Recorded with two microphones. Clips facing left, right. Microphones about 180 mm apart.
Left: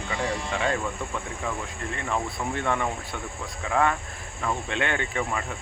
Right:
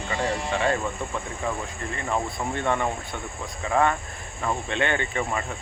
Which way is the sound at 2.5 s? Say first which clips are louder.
Right 2 dB; centre (ahead or behind).